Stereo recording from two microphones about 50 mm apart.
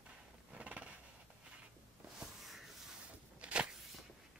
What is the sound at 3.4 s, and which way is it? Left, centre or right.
Walk, right.